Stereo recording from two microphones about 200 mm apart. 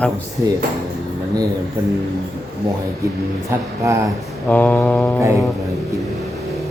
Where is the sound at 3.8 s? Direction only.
15° right (ahead or behind).